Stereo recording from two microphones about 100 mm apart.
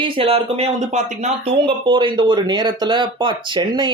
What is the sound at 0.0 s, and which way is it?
Speech, 70° right (ahead or behind).